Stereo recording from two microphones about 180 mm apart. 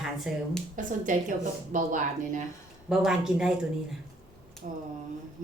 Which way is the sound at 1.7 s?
45° right (ahead or behind).